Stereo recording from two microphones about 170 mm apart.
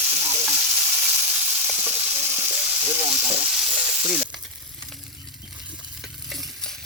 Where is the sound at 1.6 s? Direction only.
15° right (ahead or behind).